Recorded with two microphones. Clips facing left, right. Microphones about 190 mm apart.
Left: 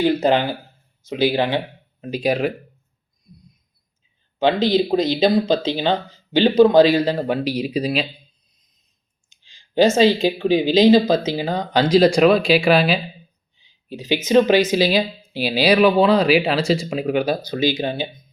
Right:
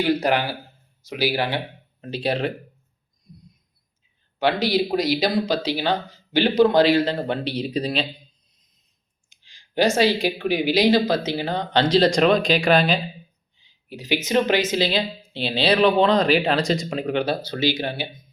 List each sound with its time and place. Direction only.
0.0 s speech: 25° left (ahead or behind)
4.4 s speech: 20° left (ahead or behind)
9.3 s speech: 20° left (ahead or behind)
13.8 s speech: 20° left (ahead or behind)